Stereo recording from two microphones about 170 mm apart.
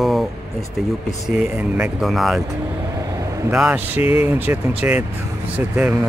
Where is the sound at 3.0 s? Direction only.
20° right (ahead or behind).